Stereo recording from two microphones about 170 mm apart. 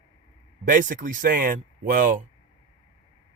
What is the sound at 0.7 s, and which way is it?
Speech, 50° right (ahead or behind).